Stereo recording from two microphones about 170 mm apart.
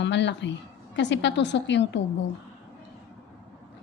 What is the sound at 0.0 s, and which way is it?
A woman's voice, 90° left.